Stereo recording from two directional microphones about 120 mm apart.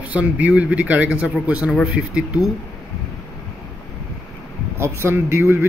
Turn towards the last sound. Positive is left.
turn(degrees=-20)  # may be behind; listen again after turning